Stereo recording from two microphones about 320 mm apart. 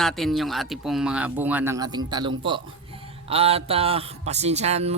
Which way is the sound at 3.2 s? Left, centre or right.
Centre.